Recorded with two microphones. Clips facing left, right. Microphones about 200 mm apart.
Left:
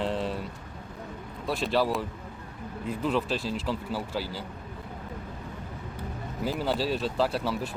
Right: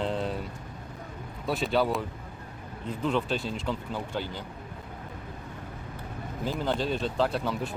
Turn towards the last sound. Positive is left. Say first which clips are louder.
# even
turn(degrees=5)  # may be behind; listen again after turning